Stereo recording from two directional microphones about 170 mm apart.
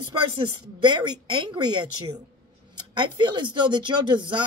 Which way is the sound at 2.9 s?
25° right (ahead or behind).